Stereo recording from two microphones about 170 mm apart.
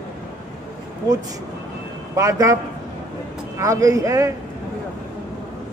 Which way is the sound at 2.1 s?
20° right (ahead or behind).